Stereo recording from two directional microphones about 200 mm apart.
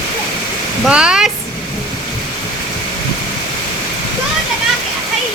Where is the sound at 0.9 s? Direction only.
5° right (ahead or behind).